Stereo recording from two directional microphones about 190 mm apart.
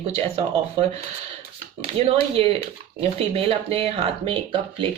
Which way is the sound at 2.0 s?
30° right (ahead or behind).